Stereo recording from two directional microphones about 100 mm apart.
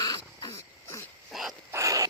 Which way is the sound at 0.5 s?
30° left (ahead or behind).